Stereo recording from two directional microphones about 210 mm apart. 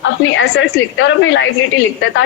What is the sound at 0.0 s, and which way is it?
A woman's voice, 60° left (ahead or behind).